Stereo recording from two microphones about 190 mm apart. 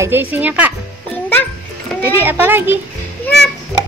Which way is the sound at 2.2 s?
10° right (ahead or behind).